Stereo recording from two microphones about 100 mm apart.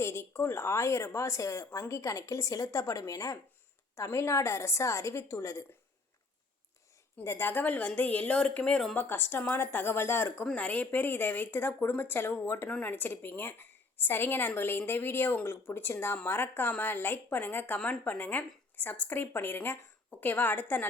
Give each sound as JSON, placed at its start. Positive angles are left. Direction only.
{"t": 0.0, "sound": "a woman's voice", "side_deg": 30}
{"t": 7.3, "sound": "speech", "side_deg": 20}
{"t": 9.0, "sound": "a woman's voice", "side_deg": 20}
{"t": 10.4, "sound": "a woman's voice", "side_deg": 10}